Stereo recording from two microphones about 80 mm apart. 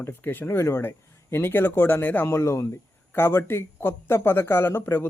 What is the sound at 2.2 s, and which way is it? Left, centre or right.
A man's voice, left.